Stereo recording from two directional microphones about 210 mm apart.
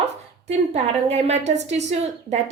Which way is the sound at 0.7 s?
30° right (ahead or behind).